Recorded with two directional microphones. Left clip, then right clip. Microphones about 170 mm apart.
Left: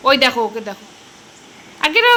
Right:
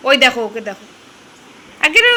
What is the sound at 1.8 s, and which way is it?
Speech, 5° left (ahead or behind).